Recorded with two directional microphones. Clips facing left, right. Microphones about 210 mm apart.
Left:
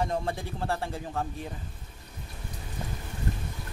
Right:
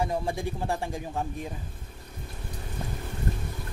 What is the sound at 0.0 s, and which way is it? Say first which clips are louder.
A man's voice: right 2 dB; 10° right (ahead or behind).